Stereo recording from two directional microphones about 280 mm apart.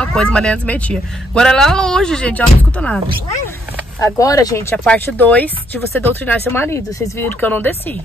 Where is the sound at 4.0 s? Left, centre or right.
Centre.